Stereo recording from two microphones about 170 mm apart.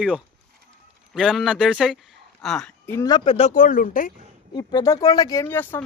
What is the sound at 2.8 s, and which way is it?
Speech, 20° left (ahead or behind).